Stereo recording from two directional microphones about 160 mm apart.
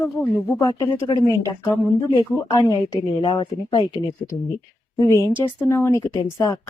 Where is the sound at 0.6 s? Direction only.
25° left (ahead or behind).